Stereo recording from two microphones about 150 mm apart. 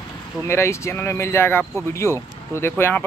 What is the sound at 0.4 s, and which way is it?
Speech, 15° left (ahead or behind).